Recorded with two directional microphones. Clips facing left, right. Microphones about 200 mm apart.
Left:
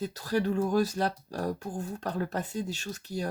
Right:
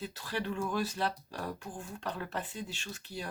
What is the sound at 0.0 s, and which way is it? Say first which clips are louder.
Speech: left 8 dB; 40° left (ahead or behind).